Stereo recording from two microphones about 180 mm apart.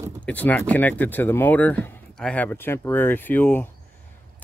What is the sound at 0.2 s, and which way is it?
Speech, 10° left (ahead or behind).